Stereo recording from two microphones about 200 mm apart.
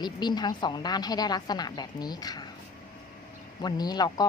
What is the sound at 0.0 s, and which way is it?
Speech, 20° left (ahead or behind).